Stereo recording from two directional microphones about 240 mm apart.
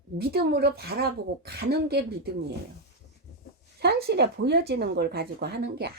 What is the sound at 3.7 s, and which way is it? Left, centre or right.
Speech, right.